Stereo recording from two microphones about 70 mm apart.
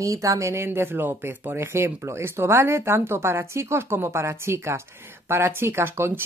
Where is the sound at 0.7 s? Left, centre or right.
Right.